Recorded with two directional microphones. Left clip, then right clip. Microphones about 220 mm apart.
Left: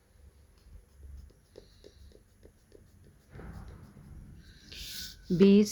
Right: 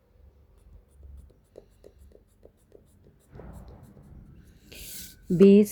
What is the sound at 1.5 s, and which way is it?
Writing, 10° right (ahead or behind).